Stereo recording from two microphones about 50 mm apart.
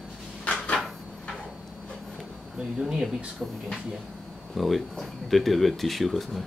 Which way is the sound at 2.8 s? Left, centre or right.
Centre.